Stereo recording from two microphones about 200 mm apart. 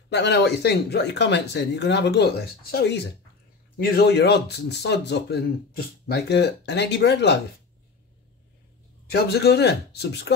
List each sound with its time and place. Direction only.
0.1 s speech: 60° left (ahead or behind)
9.1 s speech: 55° left (ahead or behind)